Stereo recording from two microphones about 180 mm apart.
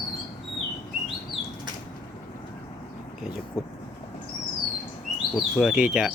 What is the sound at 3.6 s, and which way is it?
Speech, 15° left (ahead or behind).